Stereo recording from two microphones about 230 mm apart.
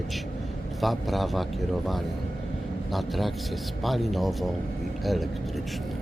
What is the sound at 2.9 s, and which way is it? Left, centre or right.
Speech, centre.